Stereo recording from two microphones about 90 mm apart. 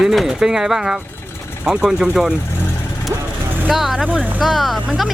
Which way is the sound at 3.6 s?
5° right (ahead or behind).